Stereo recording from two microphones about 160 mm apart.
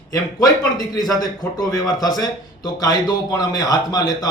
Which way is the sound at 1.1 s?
25° left (ahead or behind).